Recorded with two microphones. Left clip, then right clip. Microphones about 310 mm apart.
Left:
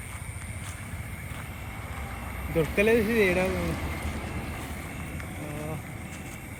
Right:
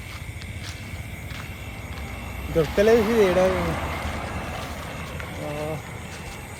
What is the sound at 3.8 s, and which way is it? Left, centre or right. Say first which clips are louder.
Boat: right 6 dB; right.